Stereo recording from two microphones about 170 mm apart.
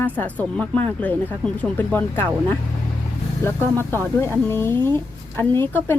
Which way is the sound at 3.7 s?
15° left (ahead or behind).